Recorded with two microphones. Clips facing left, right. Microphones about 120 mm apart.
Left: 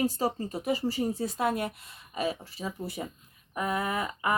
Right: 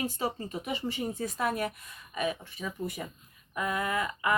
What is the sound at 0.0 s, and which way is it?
Speech, 40° left (ahead or behind).